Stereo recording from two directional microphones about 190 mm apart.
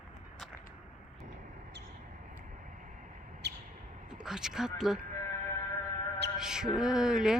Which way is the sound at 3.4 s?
65° right (ahead or behind).